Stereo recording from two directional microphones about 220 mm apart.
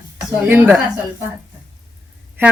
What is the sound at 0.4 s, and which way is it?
Speech, 10° right (ahead or behind).